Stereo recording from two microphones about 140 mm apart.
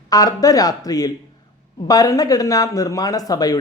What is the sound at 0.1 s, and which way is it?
Speech, 25° left (ahead or behind).